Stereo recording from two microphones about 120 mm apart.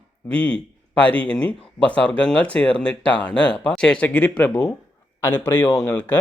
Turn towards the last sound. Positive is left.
turn(degrees=15)  # may be behind; listen again after turning